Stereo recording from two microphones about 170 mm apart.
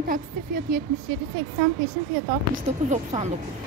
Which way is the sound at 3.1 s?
45° right (ahead or behind).